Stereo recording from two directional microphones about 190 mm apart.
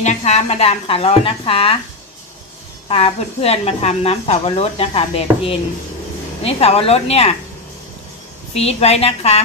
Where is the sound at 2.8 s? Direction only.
30° left (ahead or behind).